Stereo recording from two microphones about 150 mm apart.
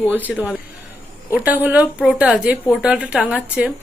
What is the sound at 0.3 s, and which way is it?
Speech, 5° right (ahead or behind).